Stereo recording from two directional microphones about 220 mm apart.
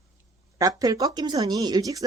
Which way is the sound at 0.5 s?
15° right (ahead or behind).